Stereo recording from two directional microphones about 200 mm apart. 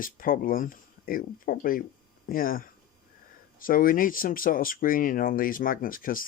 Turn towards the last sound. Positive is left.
turn(degrees=45)  # may be behind; listen again after turning